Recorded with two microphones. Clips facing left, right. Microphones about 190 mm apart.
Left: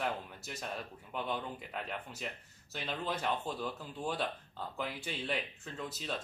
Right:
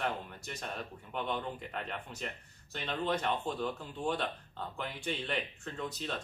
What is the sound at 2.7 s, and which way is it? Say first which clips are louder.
Speech: right 4 dB; 5° left (ahead or behind).